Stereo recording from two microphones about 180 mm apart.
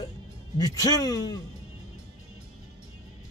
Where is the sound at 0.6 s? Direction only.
20° left (ahead or behind).